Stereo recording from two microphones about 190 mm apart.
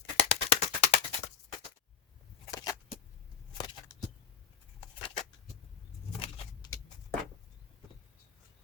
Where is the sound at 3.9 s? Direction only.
15° left (ahead or behind).